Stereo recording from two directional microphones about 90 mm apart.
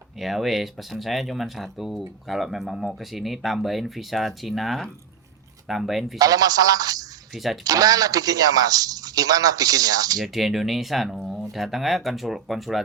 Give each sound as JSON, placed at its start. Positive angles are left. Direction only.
{"t": 0.2, "sound": "speech", "side_deg": 0}
{"t": 6.1, "sound": "speech", "side_deg": -45}
{"t": 7.3, "sound": "speech", "side_deg": 0}
{"t": 7.6, "sound": "speech", "side_deg": -45}
{"t": 10.2, "sound": "speech", "side_deg": 0}